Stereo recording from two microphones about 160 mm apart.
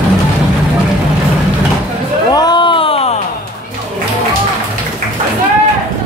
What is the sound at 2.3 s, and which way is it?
Music, 25° left (ahead or behind).